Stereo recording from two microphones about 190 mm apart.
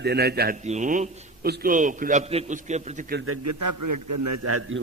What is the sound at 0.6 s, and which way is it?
Speech, 40° right (ahead or behind).